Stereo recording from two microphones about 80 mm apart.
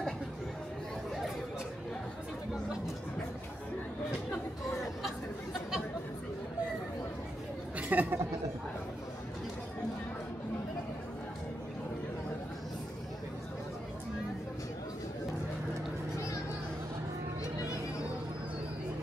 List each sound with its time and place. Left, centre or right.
7.7 s chatter: right